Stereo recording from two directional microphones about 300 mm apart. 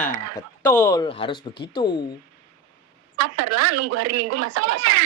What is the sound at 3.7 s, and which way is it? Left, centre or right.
Speech, right.